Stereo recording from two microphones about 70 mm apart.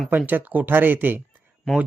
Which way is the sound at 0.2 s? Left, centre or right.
Right.